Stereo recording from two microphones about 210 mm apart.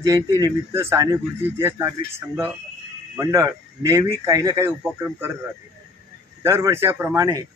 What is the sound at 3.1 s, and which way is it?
Speech, 15° right (ahead or behind).